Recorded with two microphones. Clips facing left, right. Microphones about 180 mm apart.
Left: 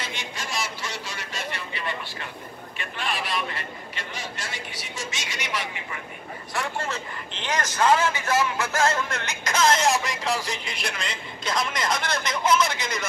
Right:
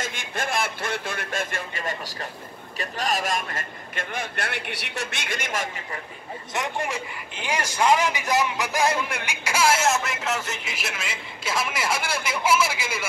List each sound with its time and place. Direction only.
0.0 s a sound: 50° right (ahead or behind)
2.8 s a man's voice: 40° right (ahead or behind)
6.5 s a man's voice: 15° right (ahead or behind)